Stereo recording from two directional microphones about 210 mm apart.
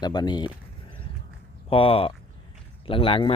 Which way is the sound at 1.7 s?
25° left (ahead or behind).